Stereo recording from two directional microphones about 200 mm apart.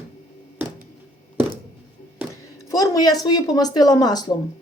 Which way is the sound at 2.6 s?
15° left (ahead or behind).